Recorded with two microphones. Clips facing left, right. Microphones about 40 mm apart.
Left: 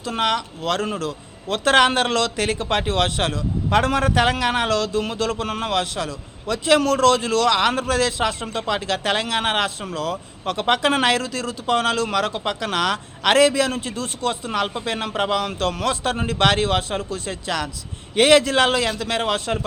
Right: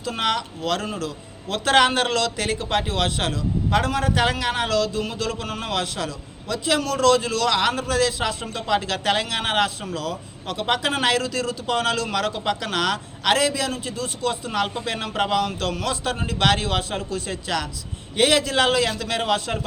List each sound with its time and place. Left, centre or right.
0.2 s a man's voice: left
4.2 s speech: left
4.7 s a man's voice: left
8.8 s a man's voice: left
13.2 s a man's voice: left
14.5 s speech: left
15.4 s a man's voice: left
18.1 s a man's voice: left